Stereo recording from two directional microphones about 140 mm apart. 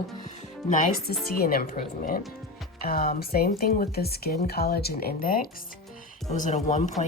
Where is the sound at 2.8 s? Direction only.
90° left.